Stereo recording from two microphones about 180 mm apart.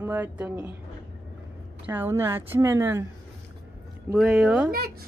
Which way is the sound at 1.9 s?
10° right (ahead or behind).